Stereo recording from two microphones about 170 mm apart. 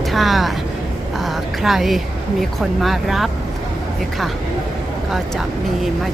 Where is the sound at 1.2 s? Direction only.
Centre (ahead or behind).